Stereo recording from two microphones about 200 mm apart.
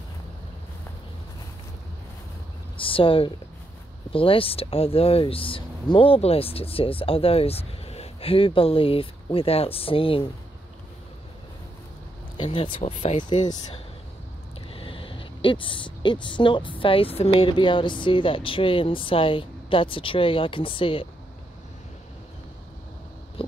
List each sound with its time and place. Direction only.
2.8 s a woman's voice: 25° left (ahead or behind)
12.4 s a woman's voice: 25° left (ahead or behind)
14.7 s a woman's voice: 25° left (ahead or behind)